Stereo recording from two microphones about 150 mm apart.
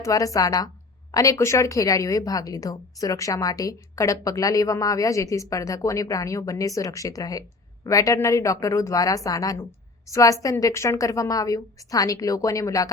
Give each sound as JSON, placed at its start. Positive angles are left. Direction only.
{"t": 0.0, "sound": "a woman's voice", "side_deg": 20}